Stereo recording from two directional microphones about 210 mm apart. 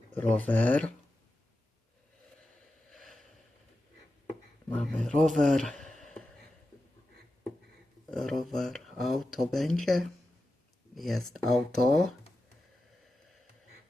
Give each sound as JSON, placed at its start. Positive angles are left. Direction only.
{"t": 0.1, "sound": "speech", "side_deg": 10}
{"t": 2.9, "sound": "a sound", "side_deg": 0}
{"t": 4.7, "sound": "speech", "side_deg": 5}
{"t": 8.1, "sound": "speech", "side_deg": 0}